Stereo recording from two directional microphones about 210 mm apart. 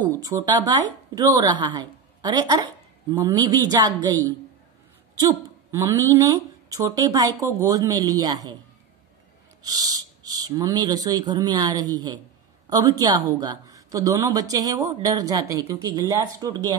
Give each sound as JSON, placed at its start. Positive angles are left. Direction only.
{"t": 0.2, "sound": "a woman's voice", "side_deg": -20}
{"t": 5.1, "sound": "speech", "side_deg": -15}
{"t": 9.6, "sound": "a woman's voice", "side_deg": -20}